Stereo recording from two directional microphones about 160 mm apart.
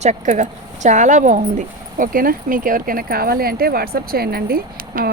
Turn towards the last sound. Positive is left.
turn(degrees=-70)  # may be behind; listen again after turning